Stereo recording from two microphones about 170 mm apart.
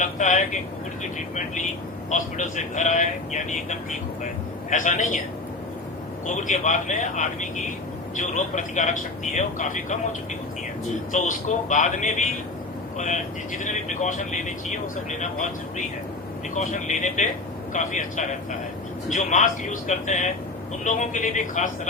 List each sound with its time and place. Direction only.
0.0 s speech: 45° left (ahead or behind)
6.2 s speech: 45° left (ahead or behind)
16.6 s speech: 45° left (ahead or behind)